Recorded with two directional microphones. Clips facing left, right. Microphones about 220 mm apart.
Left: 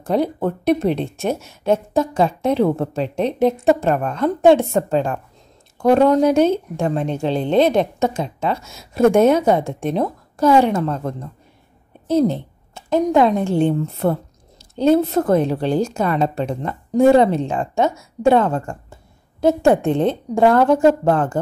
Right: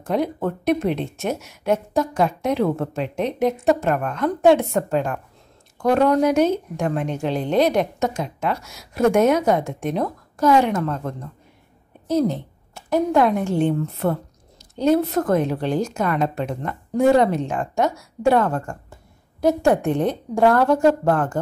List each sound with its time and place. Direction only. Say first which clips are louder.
0.0 s a woman's voice: left 3 dB; 30° left (ahead or behind)